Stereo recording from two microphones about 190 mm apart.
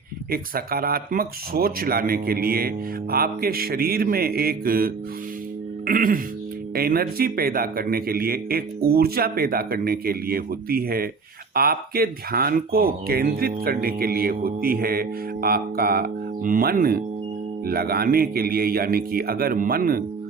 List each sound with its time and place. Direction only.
0.3 s speech: 50° right (ahead or behind)
5.8 s music: 45° right (ahead or behind)
6.7 s speech: 55° right (ahead or behind)